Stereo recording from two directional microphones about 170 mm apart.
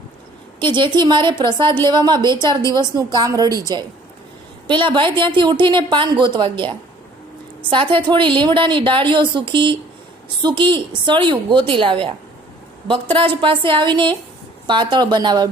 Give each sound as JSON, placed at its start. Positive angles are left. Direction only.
{"t": 0.6, "sound": "a woman's voice", "side_deg": -30}
{"t": 7.7, "sound": "a woman's voice", "side_deg": -30}
{"t": 13.1, "sound": "a woman's voice", "side_deg": -30}